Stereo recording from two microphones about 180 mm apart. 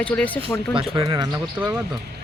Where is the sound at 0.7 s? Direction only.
25° right (ahead or behind).